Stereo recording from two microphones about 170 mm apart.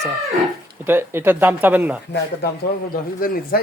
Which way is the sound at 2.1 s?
75° left (ahead or behind).